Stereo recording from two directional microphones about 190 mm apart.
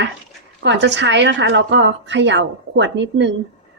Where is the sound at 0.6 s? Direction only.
65° right (ahead or behind).